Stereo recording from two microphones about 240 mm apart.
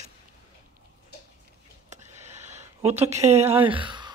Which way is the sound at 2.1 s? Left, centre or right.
Right.